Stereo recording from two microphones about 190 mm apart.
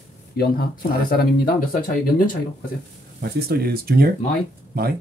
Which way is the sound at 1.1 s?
50° left (ahead or behind).